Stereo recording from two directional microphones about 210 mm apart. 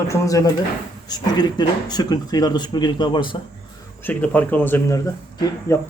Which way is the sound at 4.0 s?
10° left (ahead or behind).